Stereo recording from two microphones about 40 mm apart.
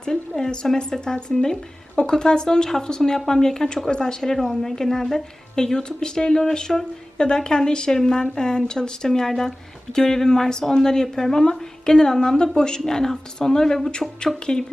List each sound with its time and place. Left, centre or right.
0.0 s speech: centre